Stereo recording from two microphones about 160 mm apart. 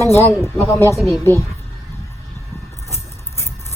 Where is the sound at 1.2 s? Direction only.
15° left (ahead or behind).